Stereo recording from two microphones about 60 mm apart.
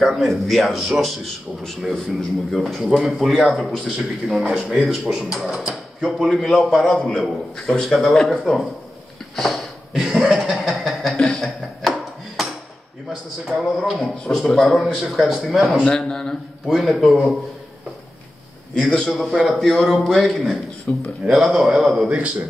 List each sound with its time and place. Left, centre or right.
0.0 s speech: centre
6.9 s a man's voice: centre
9.3 s a sound: centre
10.0 s chuckle: centre
10.6 s a sound: centre
13.5 s speech: centre
15.8 s a man's voice: centre
18.8 s speech: centre
20.9 s speech: centre
21.3 s speech: centre